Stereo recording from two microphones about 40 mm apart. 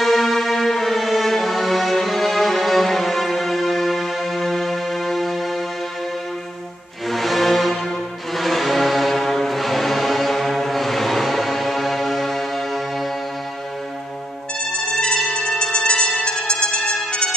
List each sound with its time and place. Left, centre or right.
0.0 s music: centre
7.1 s music: centre
15.0 s trumpet: centre